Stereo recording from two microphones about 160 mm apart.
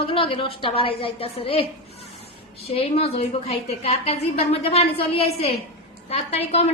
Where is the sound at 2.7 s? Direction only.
35° left (ahead or behind).